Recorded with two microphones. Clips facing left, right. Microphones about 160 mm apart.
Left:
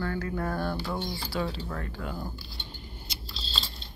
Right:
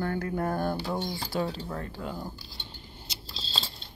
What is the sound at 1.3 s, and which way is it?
Speech, 40° right (ahead or behind).